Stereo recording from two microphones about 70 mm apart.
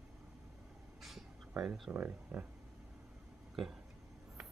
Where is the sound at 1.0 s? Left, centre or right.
Centre.